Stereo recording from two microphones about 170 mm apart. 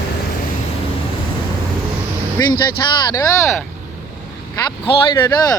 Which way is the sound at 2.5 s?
25° left (ahead or behind).